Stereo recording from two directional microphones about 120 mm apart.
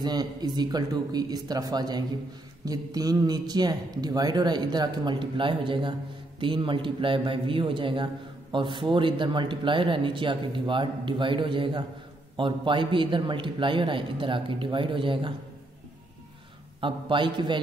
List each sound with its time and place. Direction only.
0.0 s a man's voice: 35° right (ahead or behind)
16.8 s speech: 40° right (ahead or behind)